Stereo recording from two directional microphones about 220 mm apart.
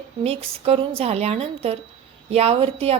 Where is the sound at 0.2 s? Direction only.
25° right (ahead or behind).